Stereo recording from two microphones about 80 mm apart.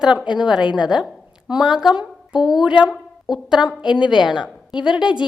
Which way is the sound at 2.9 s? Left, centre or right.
Centre.